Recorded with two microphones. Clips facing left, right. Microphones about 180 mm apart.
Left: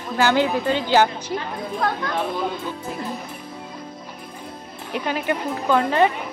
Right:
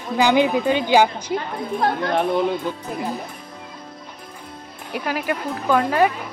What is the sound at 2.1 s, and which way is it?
Speech, 60° right (ahead or behind).